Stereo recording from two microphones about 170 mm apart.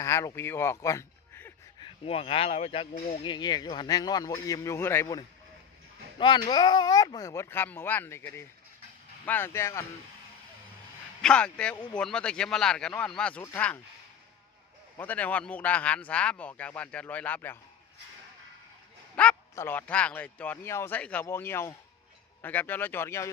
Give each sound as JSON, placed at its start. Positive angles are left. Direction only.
{"t": 0.0, "sound": "speech", "side_deg": 15}
{"t": 1.8, "sound": "speech", "side_deg": 35}
{"t": 6.1, "sound": "speech", "side_deg": 30}
{"t": 11.2, "sound": "speech", "side_deg": 5}
{"t": 14.9, "sound": "speech", "side_deg": 10}
{"t": 19.1, "sound": "speech", "side_deg": 10}